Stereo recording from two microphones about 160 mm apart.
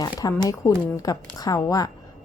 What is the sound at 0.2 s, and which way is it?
A woman's voice, 20° left (ahead or behind).